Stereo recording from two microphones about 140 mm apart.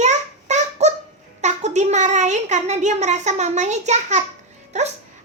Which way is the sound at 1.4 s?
55° right (ahead or behind).